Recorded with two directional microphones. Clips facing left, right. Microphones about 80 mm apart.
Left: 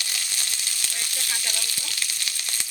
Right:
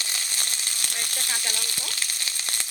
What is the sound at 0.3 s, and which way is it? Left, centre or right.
Frying, right.